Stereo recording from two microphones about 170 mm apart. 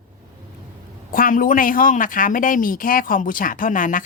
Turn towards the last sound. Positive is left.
turn(degrees=50)  # may be behind; listen again after turning